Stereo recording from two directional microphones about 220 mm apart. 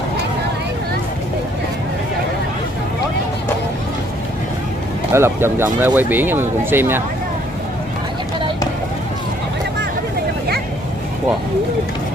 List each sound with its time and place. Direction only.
5.1 s speech: 10° right (ahead or behind)